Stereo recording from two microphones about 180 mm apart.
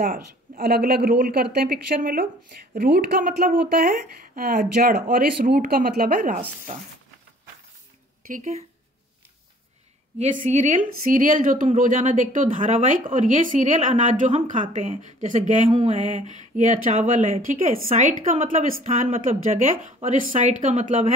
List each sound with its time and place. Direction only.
0.1 s speech: 55° right (ahead or behind)
8.3 s speech: 40° right (ahead or behind)
10.1 s speech: 40° right (ahead or behind)